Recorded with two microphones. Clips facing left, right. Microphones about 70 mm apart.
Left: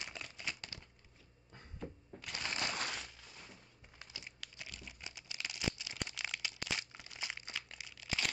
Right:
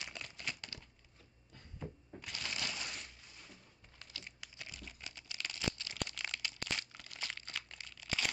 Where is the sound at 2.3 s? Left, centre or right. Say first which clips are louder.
Left 3 dB; left.